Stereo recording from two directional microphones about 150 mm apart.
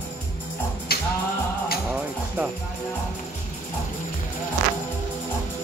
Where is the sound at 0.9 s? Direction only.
90° left.